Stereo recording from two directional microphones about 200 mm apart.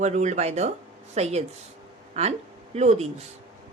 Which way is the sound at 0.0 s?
35° right (ahead or behind).